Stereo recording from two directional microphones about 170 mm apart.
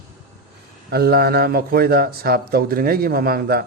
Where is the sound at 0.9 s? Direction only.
65° right (ahead or behind).